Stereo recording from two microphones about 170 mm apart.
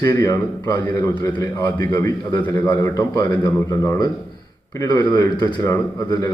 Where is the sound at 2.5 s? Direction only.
10° left (ahead or behind).